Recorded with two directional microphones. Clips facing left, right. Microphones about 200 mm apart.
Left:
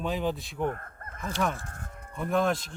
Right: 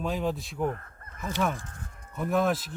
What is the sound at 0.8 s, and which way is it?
Fowl, 50° left (ahead or behind).